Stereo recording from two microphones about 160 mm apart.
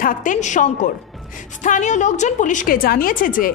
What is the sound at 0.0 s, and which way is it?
A woman's voice, 55° left (ahead or behind).